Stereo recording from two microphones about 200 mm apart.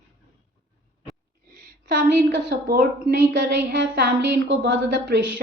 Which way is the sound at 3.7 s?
60° right (ahead or behind).